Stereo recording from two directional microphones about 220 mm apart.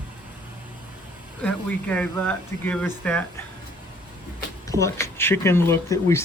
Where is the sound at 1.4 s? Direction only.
5° left (ahead or behind).